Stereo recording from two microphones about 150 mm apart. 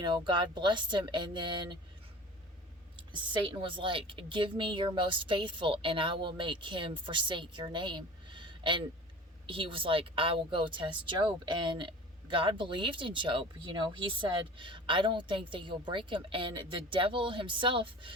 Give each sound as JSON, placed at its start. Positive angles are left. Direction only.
{"t": 0.0, "sound": "speech", "side_deg": -30}
{"t": 3.1, "sound": "speech", "side_deg": -30}